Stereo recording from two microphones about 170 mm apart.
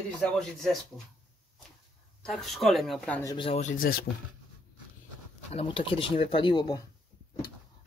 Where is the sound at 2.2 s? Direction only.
Centre (ahead or behind).